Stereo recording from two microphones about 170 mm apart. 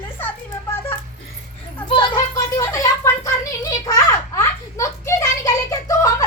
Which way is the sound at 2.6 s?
15° left (ahead or behind).